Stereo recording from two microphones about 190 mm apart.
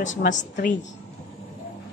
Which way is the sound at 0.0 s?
40° left (ahead or behind).